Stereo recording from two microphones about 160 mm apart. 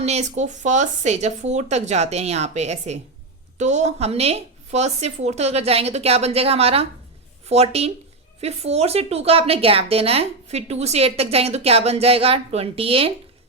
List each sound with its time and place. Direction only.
0.0 s speech: 45° right (ahead or behind)